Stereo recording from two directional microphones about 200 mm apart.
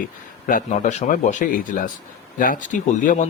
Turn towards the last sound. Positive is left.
turn(degrees=40)  # may be behind; listen again after turning